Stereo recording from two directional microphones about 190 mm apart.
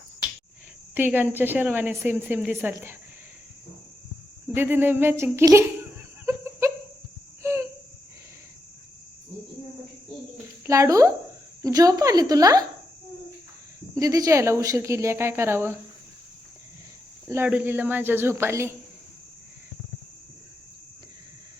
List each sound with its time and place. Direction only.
0.9 s a woman's voice: 10° right (ahead or behind)
4.5 s a woman's voice: 10° right (ahead or behind)
6.2 s a sound: 15° right (ahead or behind)
10.7 s a woman's voice: 15° right (ahead or behind)
13.9 s a woman's voice: 15° right (ahead or behind)
17.2 s a woman's voice: 10° right (ahead or behind)